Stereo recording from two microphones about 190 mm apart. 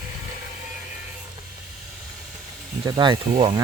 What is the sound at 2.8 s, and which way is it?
Speech, 25° right (ahead or behind).